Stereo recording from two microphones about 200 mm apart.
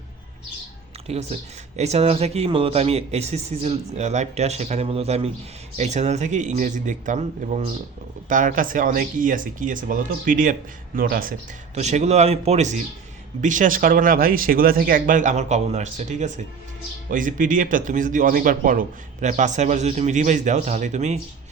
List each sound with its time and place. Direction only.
1.1 s speech: 30° right (ahead or behind)